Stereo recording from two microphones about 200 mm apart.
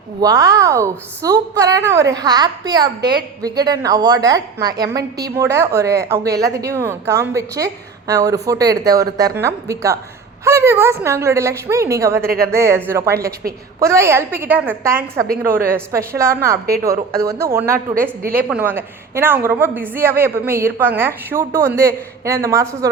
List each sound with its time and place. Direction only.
0.2 s a woman's voice: 20° right (ahead or behind)
3.0 s a woman's voice: 50° right (ahead or behind)
3.4 s a woman's voice: 20° right (ahead or behind)
12.2 s a woman's voice: 50° right (ahead or behind)
12.5 s a woman's voice: 15° right (ahead or behind)
18.2 s a woman's voice: 45° right (ahead or behind)
18.4 s a woman's voice: 5° right (ahead or behind)